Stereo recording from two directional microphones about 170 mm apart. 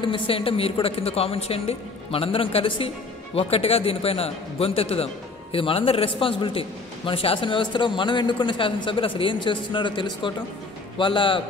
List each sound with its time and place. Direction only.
0.0 s a man's voice: 30° left (ahead or behind)